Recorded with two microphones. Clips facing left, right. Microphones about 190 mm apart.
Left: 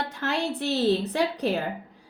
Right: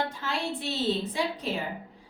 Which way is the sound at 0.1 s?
70° left (ahead or behind).